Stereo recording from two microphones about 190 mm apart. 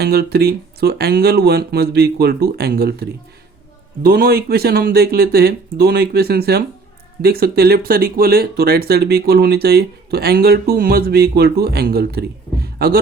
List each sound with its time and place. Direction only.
0.0 s speech: 55° right (ahead or behind)